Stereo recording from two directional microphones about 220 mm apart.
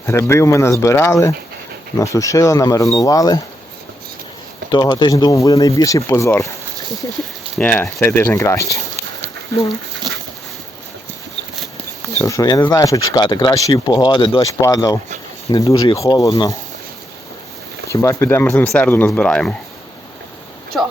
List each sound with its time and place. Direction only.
0.0 s speech: 10° left (ahead or behind)
4.7 s speech: 20° left (ahead or behind)
7.5 s speech: 5° left (ahead or behind)
12.2 s speech: 15° left (ahead or behind)
17.8 s speech: 15° left (ahead or behind)